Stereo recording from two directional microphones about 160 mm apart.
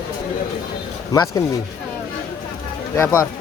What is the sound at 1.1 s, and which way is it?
Speech, 25° left (ahead or behind).